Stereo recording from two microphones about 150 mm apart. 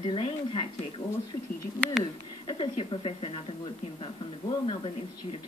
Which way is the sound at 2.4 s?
35° left (ahead or behind).